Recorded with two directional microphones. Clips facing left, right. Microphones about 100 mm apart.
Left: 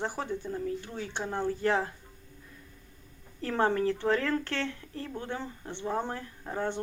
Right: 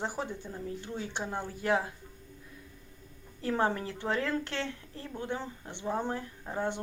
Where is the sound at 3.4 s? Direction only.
15° right (ahead or behind).